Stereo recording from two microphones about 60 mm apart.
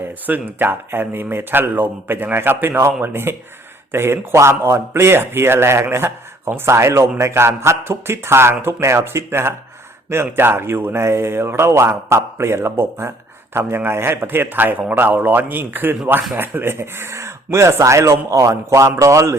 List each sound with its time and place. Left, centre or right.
0.0 s speech: right